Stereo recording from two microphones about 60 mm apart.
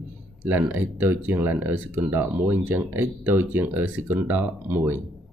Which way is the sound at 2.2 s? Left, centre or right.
Right.